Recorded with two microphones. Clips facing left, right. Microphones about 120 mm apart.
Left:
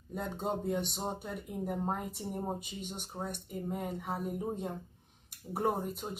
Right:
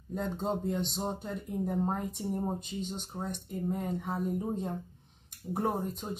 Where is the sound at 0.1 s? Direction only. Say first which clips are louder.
Right 3 dB; 10° left (ahead or behind).